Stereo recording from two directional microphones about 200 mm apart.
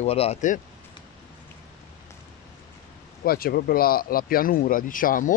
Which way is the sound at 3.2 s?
50° left (ahead or behind).